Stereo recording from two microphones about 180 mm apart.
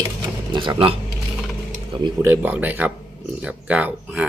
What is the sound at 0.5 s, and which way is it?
Speech, 25° right (ahead or behind).